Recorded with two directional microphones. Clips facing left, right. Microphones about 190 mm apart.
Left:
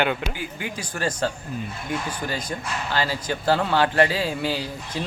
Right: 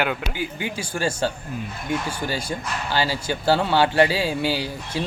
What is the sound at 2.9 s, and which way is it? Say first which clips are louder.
Speech: right 2 dB; 30° right (ahead or behind).